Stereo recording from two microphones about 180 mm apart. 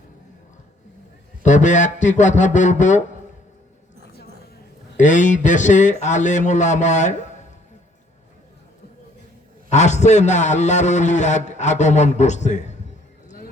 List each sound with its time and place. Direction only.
1.5 s speech: 45° left (ahead or behind)
4.9 s speech: 45° left (ahead or behind)
9.6 s a man's voice: 40° left (ahead or behind)
13.2 s music: 45° left (ahead or behind)